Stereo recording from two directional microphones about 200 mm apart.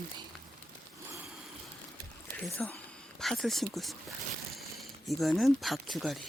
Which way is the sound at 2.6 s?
Centre (ahead or behind).